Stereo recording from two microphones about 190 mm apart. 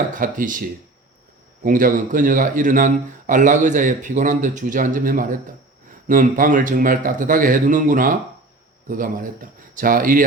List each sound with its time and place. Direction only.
0.1 s a man's voice: 45° right (ahead or behind)
1.6 s a man's voice: 45° right (ahead or behind)